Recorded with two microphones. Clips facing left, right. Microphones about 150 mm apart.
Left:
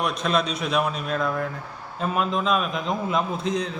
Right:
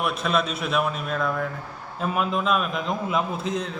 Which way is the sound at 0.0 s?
5° right (ahead or behind).